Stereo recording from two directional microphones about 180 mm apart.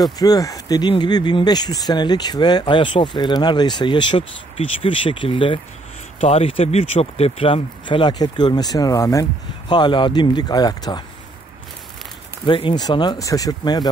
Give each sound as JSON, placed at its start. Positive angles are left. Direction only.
{"t": 0.2, "sound": "speech", "side_deg": 20}
{"t": 12.4, "sound": "speech", "side_deg": 25}